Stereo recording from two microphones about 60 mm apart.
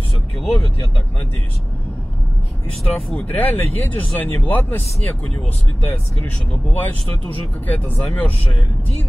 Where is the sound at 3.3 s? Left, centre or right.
Left.